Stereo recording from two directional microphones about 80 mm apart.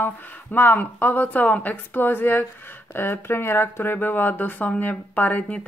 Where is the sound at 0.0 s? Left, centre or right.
Left.